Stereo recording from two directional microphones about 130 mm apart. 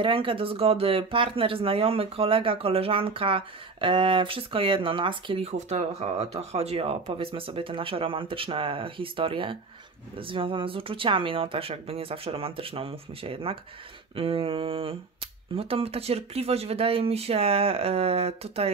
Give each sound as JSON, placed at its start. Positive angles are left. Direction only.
{"t": 0.0, "sound": "speech", "side_deg": -40}